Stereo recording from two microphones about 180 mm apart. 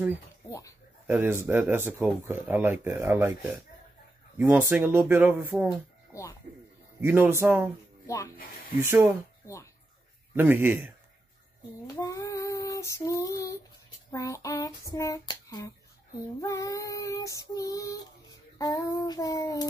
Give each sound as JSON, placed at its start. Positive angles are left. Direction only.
{"t": 1.0, "sound": "speech", "side_deg": -10}
{"t": 6.1, "sound": "a sound", "side_deg": 15}
{"t": 7.0, "sound": "speech", "side_deg": -10}
{"t": 8.8, "sound": "speech", "side_deg": -10}
{"t": 10.3, "sound": "speech", "side_deg": -10}
{"t": 11.9, "sound": "female singing", "side_deg": 20}
{"t": 14.1, "sound": "a sound", "side_deg": 20}
{"t": 16.3, "sound": "female singing", "side_deg": 20}